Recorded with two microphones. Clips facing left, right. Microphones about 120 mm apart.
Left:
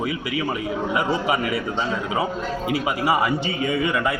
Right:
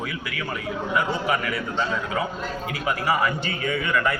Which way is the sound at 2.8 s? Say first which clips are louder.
Left 1 dB; 10° left (ahead or behind).